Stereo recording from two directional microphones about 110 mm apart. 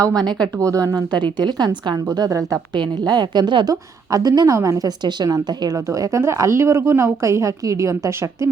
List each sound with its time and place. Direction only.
0.1 s speech: 5° left (ahead or behind)
0.6 s a woman's voice: 30° right (ahead or behind)
1.1 s a woman's voice: 45° right (ahead or behind)
4.1 s a woman's voice: 35° right (ahead or behind)